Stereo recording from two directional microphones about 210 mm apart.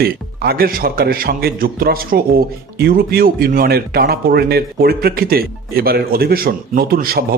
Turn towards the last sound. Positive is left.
turn(degrees=-45)  # may be behind; listen again after turning